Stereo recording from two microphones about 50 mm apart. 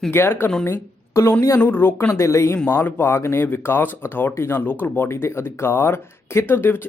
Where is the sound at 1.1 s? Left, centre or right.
Left.